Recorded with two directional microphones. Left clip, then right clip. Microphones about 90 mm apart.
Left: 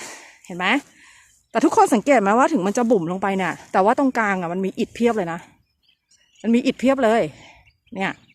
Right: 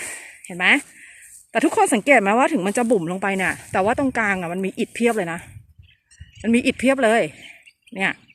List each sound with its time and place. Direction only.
0.0 s a sound: 35° left (ahead or behind)
1.5 s speech: 45° left (ahead or behind)
3.6 s speech: 55° left (ahead or behind); by 8.2 s 25° left (ahead or behind)